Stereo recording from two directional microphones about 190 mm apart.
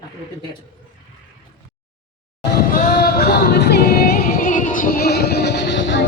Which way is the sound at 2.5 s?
50° left (ahead or behind).